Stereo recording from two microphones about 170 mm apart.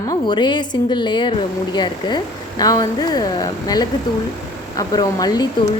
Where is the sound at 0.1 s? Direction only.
25° left (ahead or behind).